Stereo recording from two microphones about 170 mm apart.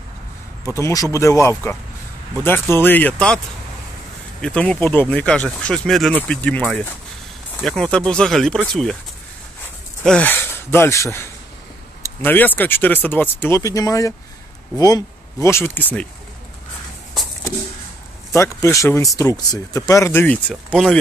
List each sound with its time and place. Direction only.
0.7 s speech: 15° left (ahead or behind)
4.4 s speech: 5° left (ahead or behind)
10.0 s speech: 10° left (ahead or behind)
18.3 s speech: 20° left (ahead or behind)